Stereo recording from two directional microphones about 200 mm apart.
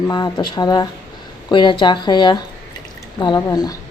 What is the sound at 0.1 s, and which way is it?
Speech, 20° left (ahead or behind).